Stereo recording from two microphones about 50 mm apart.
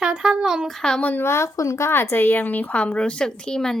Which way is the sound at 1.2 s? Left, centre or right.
Left.